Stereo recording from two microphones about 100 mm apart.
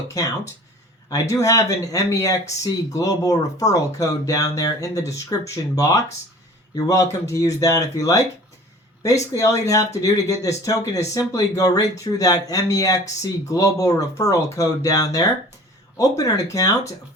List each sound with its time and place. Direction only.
0.1 s speech: 35° left (ahead or behind)